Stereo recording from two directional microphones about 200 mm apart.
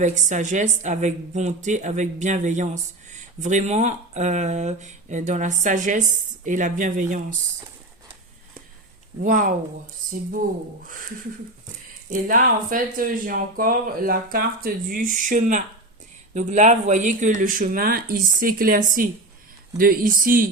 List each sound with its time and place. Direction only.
0.0 s a woman's voice: 35° right (ahead or behind)
9.2 s a woman's voice: 40° right (ahead or behind)
12.0 s a woman's voice: 40° right (ahead or behind)